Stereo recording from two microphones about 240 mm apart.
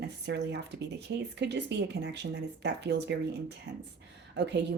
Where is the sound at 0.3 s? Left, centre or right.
Right.